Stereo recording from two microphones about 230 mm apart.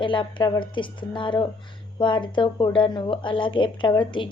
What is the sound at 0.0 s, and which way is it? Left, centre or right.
A woman's voice, left.